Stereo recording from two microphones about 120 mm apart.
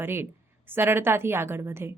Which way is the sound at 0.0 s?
20° right (ahead or behind).